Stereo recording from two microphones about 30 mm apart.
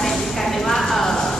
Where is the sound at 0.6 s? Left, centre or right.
Centre.